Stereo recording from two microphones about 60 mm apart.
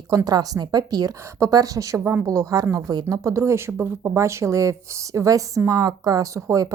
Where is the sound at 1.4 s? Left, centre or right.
Right.